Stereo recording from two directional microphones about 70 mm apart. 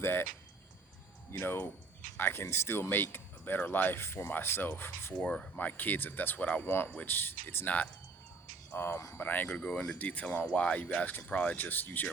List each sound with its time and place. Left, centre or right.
0.0 s speech: left
1.3 s speech: left
5.2 s speech: centre
5.5 s speech: left
8.7 s speech: left
9.5 s speech: centre